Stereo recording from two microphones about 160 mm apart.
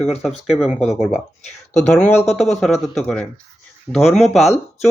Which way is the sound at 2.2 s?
45° left (ahead or behind).